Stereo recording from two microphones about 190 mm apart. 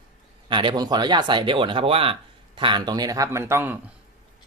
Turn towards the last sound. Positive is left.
turn(degrees=-10)  # may be behind; listen again after turning